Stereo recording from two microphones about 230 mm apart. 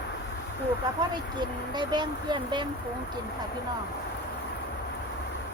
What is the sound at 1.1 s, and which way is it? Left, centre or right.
Speech, centre.